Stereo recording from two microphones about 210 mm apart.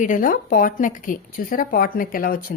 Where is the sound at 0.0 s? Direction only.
40° left (ahead or behind).